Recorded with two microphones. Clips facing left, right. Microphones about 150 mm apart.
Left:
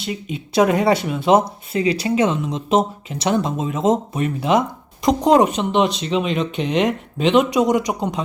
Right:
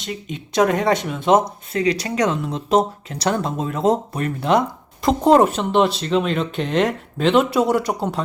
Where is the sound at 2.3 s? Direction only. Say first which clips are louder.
Even; centre (ahead or behind).